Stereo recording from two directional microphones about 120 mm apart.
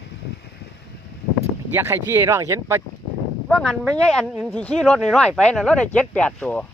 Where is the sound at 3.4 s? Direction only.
5° left (ahead or behind).